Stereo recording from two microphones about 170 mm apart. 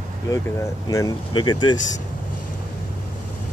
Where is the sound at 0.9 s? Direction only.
20° left (ahead or behind).